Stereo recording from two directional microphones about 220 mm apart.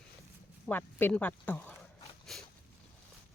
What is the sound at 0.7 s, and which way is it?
Speech, 10° left (ahead or behind).